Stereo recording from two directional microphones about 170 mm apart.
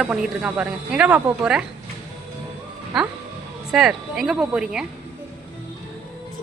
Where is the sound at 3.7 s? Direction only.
Centre (ahead or behind).